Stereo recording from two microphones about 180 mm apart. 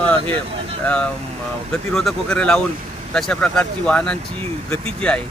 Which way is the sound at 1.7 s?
Centre (ahead or behind).